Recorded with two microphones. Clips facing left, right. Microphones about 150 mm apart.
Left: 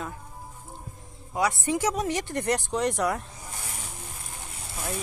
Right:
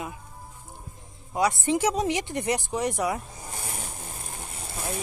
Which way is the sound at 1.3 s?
20° right (ahead or behind).